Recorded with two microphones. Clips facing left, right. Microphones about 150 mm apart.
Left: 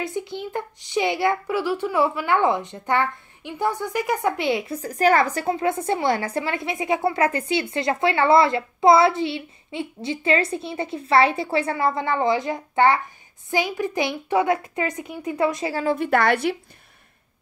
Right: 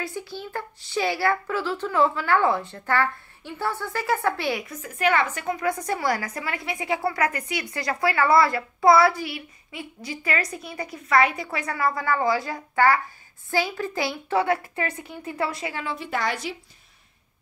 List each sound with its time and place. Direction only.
0.0 s a woman's voice: 20° left (ahead or behind)
15.7 s a woman's voice: 40° left (ahead or behind)
16.0 s a woman's voice: 60° left (ahead or behind)